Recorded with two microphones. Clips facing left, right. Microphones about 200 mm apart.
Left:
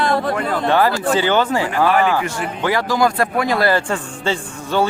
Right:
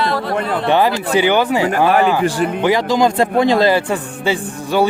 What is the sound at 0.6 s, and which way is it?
A man's voice, 15° right (ahead or behind).